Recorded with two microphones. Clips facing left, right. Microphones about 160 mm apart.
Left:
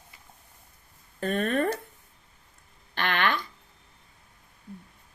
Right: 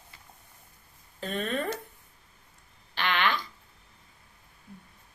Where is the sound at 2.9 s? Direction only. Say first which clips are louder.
Left 1 dB; 50° left (ahead or behind).